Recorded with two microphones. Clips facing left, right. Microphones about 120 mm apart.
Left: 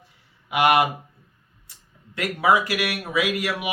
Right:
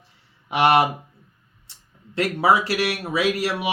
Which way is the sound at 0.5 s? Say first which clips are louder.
Right 1 dB; 30° right (ahead or behind).